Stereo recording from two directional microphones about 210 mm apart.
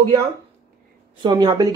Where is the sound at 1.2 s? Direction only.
20° right (ahead or behind).